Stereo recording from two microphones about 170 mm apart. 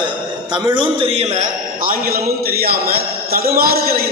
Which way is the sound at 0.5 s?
30° right (ahead or behind).